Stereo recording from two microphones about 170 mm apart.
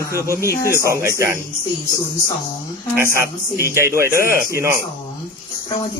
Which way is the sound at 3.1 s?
15° right (ahead or behind).